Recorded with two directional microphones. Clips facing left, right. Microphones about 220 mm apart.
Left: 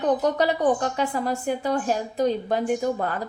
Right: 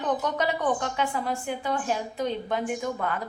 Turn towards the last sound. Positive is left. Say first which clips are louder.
# left 5 dB
turn(degrees=35)  # may be behind; listen again after turning